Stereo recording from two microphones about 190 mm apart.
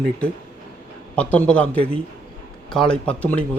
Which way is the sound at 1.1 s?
5° left (ahead or behind).